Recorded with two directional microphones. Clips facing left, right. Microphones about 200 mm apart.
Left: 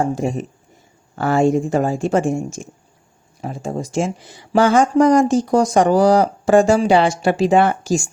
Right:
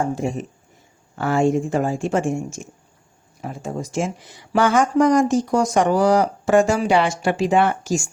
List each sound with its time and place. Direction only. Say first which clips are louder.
0.2 s speech: left 3 dB; 35° left (ahead or behind)